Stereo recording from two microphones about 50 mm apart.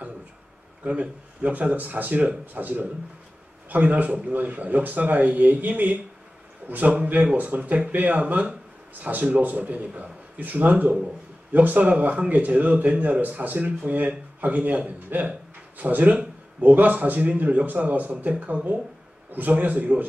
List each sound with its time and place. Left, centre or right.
0.8 s speech: right